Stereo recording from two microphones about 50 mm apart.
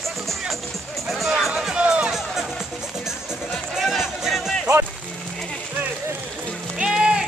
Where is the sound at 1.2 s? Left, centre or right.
Centre.